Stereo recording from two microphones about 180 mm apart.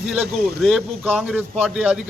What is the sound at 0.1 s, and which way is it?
A man's voice, centre (ahead or behind).